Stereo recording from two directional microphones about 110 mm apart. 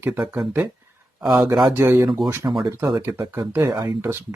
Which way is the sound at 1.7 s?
20° right (ahead or behind).